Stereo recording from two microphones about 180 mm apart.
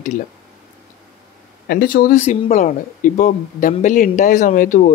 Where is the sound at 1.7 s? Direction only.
60° left (ahead or behind).